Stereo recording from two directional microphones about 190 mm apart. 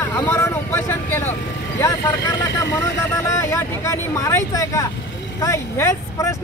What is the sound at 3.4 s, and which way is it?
Speech, 15° left (ahead or behind).